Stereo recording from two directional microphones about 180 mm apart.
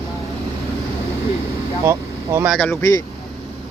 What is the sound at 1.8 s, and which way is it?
Vehicle, 15° right (ahead or behind).